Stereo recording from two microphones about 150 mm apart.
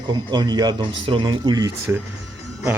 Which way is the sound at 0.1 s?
30° right (ahead or behind).